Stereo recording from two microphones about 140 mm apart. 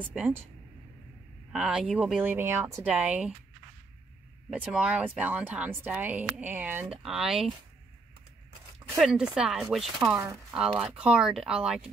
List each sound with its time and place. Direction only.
0.0 s speech: 10° right (ahead or behind)
1.5 s speech: 5° right (ahead or behind)
4.5 s speech: 5° right (ahead or behind)
8.8 s speech: centre (ahead or behind)